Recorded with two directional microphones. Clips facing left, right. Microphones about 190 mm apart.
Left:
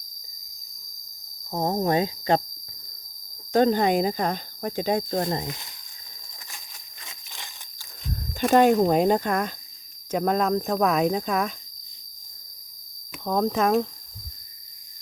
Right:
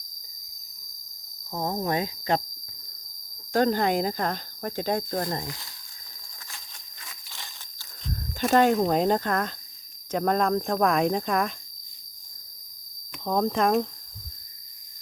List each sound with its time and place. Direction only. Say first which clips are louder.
1.5 s cricket: left 4 dB; 30° left (ahead or behind)
3.5 s speech: left 3 dB; 20° left (ahead or behind)
7.0 s a sound: left 1 dB; 15° left (ahead or behind)
8.5 s speech: left 3 dB; 15° left (ahead or behind)
13.2 s speech: left 1 dB; centre (ahead or behind)